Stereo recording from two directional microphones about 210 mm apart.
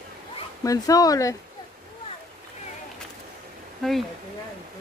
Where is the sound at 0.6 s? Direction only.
15° left (ahead or behind).